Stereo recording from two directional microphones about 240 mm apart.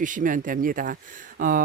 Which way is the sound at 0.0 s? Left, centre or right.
Right.